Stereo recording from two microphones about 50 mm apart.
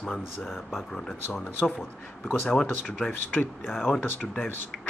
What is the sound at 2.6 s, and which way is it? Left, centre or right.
Speech, left.